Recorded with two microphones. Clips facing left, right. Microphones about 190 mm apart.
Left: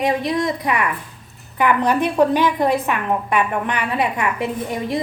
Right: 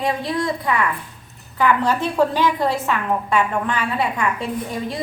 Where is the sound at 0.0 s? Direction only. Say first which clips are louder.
Left 3 dB; 20° left (ahead or behind).